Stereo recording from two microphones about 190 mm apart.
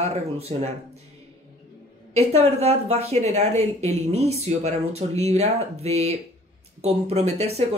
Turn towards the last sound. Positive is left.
turn(degrees=-35)  # may be behind; listen again after turning